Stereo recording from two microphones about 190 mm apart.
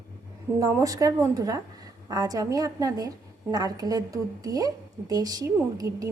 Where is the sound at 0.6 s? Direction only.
20° right (ahead or behind).